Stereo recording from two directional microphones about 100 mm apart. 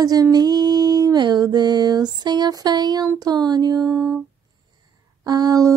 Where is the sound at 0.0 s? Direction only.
40° right (ahead or behind).